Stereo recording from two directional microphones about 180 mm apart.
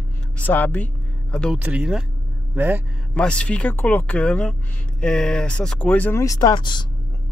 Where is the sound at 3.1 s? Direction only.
5° left (ahead or behind); by 6.8 s 25° left (ahead or behind).